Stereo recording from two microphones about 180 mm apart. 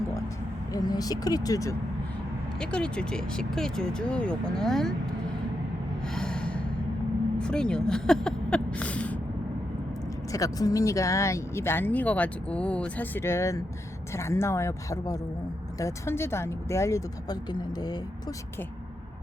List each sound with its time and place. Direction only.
0.7 s speech: 20° left (ahead or behind)
2.6 s speech: 5° left (ahead or behind)
6.1 s gasp: 5° left (ahead or behind)
7.3 s a sound: 5° left (ahead or behind)
10.3 s speech: 20° left (ahead or behind)